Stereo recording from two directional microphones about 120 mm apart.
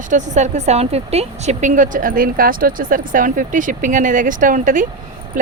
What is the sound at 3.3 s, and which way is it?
Speech, 90° right.